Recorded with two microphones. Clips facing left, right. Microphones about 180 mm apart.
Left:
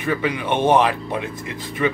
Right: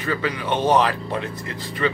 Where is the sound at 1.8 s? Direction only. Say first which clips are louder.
Left 2 dB; 10° left (ahead or behind).